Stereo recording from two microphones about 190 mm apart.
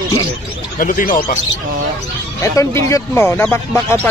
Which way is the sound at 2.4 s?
15° left (ahead or behind).